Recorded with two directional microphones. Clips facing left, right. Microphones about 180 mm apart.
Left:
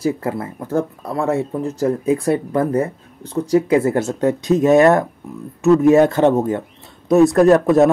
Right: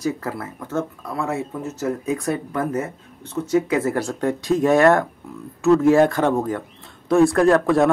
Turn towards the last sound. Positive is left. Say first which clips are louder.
# left 4 dB
turn(degrees=20)  # may be behind; listen again after turning